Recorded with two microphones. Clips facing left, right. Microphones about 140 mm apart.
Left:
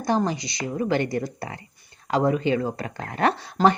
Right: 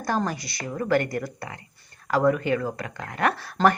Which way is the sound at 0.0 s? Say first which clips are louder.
Left 3 dB; 20° left (ahead or behind).